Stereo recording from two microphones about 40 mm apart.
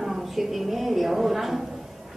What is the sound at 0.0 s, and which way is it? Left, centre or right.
A woman's voice, centre.